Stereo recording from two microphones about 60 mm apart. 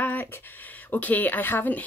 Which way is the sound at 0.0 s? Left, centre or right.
Left.